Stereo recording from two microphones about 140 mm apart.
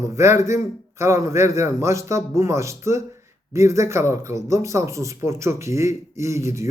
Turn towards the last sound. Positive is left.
turn(degrees=-20)  # may be behind; listen again after turning